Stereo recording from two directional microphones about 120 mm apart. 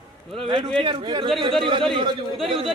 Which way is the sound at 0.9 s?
45° right (ahead or behind).